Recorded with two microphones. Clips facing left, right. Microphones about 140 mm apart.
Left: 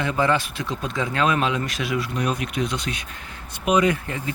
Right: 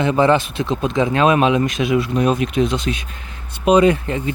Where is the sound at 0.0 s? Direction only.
25° right (ahead or behind).